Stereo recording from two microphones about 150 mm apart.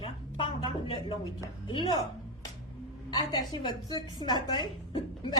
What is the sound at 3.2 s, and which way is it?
A woman's voice, 30° left (ahead or behind).